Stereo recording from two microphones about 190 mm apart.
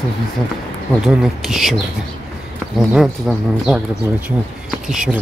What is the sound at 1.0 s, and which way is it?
Speech, centre (ahead or behind).